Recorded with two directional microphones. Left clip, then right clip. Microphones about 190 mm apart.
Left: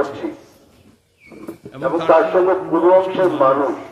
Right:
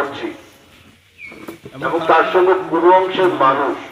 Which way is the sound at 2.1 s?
60° left (ahead or behind).